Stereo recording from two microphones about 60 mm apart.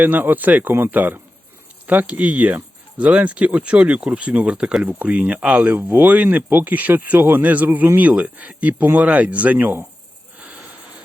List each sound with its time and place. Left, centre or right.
0.0 s speech: right
4.6 s speech: centre
4.9 s speech: right